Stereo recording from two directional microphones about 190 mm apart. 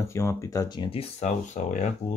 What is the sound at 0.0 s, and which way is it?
Speech, 15° left (ahead or behind).